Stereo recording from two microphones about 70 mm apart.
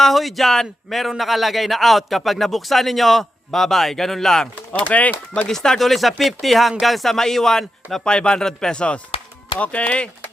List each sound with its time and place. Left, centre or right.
0.0 s a man's voice: centre
4.7 s speech: left
5.5 s a man's voice: centre